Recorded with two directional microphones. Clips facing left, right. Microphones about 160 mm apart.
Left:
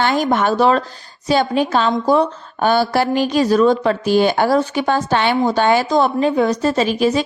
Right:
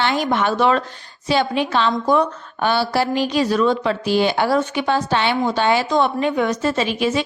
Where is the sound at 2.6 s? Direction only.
45° left (ahead or behind).